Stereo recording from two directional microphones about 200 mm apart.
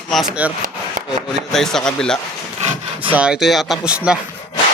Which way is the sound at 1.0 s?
40° right (ahead or behind).